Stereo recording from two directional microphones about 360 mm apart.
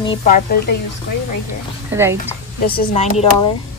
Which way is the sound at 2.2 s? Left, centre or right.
Left.